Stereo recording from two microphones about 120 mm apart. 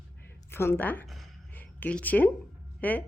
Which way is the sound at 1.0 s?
Centre (ahead or behind).